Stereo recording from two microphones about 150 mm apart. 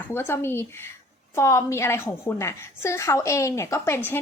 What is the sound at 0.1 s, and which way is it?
A woman's voice, 15° left (ahead or behind).